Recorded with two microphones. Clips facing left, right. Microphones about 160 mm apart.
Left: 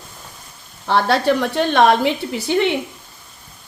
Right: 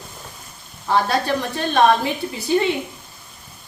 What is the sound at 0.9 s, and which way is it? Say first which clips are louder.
A woman's voice: left 3 dB; 75° left (ahead or behind).